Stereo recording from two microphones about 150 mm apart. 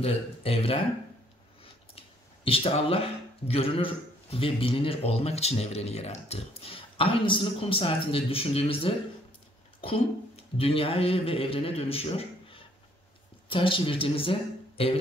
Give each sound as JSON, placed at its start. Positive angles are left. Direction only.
{"t": 0.0, "sound": "a man's voice", "side_deg": 40}